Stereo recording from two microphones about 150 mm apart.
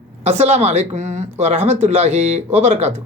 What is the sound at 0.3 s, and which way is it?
Speech, 45° right (ahead or behind).